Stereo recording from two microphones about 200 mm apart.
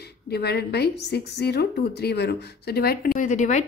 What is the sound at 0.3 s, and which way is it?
A woman's voice, 55° left (ahead or behind).